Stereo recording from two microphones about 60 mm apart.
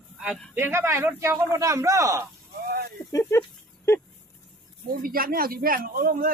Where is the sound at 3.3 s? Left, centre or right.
Left.